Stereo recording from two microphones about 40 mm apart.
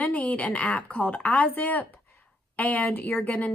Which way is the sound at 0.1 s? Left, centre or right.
Left.